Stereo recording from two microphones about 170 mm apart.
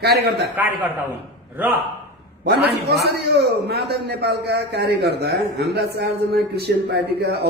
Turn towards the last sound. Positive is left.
turn(degrees=-70)  # may be behind; listen again after turning